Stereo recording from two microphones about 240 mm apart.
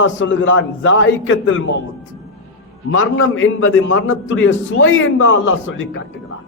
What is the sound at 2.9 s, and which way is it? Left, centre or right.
A man's voice, left.